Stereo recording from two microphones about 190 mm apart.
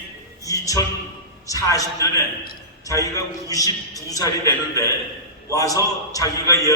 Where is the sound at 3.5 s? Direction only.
20° left (ahead or behind).